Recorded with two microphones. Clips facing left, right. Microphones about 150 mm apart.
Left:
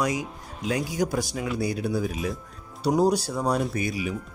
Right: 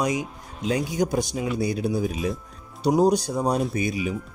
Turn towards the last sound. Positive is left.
turn(degrees=-20)  # may be behind; listen again after turning